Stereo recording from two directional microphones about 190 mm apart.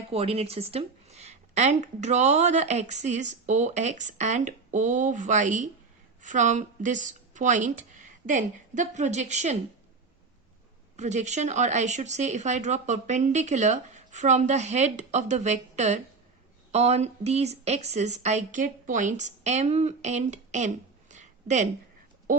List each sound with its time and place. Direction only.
0.1 s speech: 30° right (ahead or behind)
10.9 s speech: 40° right (ahead or behind)